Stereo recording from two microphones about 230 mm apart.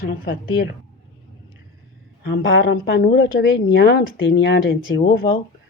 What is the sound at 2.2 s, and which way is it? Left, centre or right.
Speech, left.